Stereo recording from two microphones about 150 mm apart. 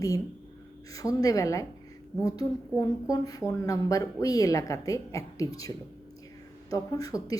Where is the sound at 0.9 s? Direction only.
25° left (ahead or behind).